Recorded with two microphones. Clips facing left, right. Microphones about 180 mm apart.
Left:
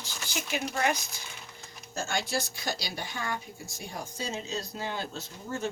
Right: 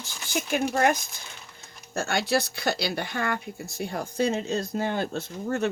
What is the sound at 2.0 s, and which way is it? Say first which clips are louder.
Speech: right 6 dB; 60° right (ahead or behind).